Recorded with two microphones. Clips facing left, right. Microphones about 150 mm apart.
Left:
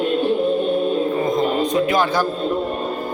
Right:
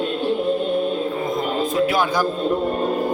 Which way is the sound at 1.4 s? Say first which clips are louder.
Left 2 dB; 5° right (ahead or behind).